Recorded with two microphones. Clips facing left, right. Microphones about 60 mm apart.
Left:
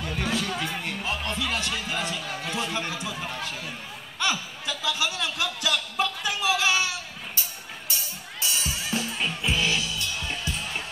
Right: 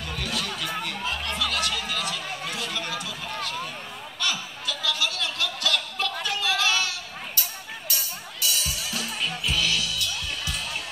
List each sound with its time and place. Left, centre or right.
0.0 s chatter: left
1.4 s music: left
4.2 s speech: left
6.2 s a sound: centre
7.9 s music: left